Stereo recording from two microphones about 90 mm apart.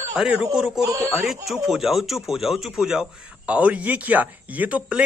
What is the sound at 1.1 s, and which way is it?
Speech, 5° right (ahead or behind).